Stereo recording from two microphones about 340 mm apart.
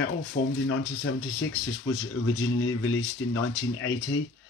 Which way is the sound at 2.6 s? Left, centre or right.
Left.